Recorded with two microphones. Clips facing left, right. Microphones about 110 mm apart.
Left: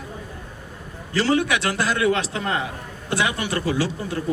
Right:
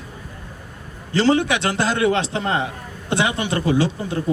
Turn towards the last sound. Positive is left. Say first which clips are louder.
# right 4 dB
turn(degrees=-25)  # may be behind; listen again after turning